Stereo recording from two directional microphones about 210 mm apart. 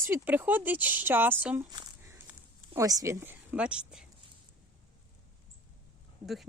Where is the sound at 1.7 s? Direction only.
20° right (ahead or behind).